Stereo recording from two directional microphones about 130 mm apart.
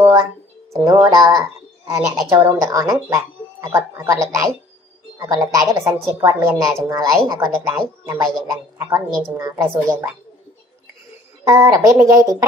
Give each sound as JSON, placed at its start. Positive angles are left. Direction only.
{"t": 0.0, "sound": "a sound", "side_deg": -20}
{"t": 0.8, "sound": "a woman's voice", "side_deg": -25}
{"t": 11.4, "sound": "a woman's voice", "side_deg": -25}